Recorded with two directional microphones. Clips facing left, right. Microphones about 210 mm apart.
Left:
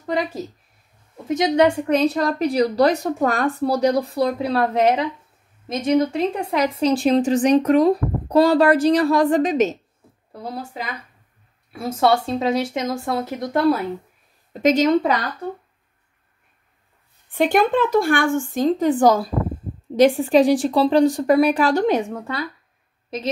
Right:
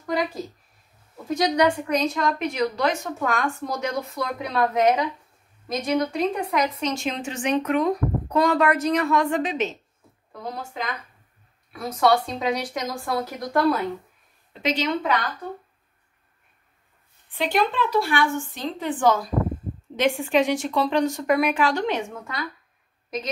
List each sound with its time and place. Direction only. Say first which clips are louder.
1.3 s a woman's voice: left 4 dB; 25° left (ahead or behind); by 9.8 s 40° left (ahead or behind)
11.7 s speech: left 2 dB; 25° left (ahead or behind)
14.5 s a woman's voice: left 9 dB; 45° left (ahead or behind)
17.3 s a woman's voice: left 6 dB; 50° left (ahead or behind); by 22.4 s 35° left (ahead or behind)
23.0 s a sound: left 4 dB; 30° left (ahead or behind)